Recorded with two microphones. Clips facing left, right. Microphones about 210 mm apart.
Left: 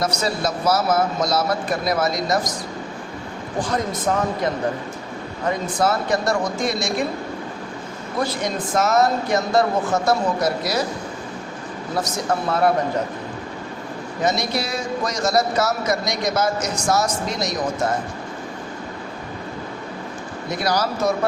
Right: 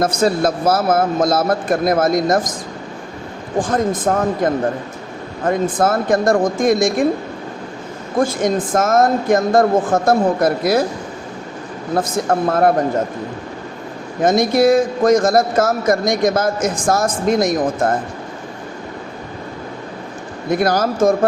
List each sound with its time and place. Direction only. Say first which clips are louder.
0.0 s a man's voice: right 7 dB; 50° right (ahead or behind)
3.6 s a man's voice: right 6 dB; 50° right (ahead or behind)
8.1 s a man's voice: right 7 dB; 50° right (ahead or behind)
11.9 s a man's voice: right 6 dB; 55° right (ahead or behind)
14.2 s a man's voice: right 9 dB; 50° right (ahead or behind)
20.5 s a man's voice: right 6 dB; 50° right (ahead or behind)